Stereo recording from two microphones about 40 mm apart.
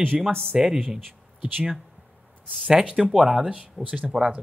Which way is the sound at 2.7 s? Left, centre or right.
Centre.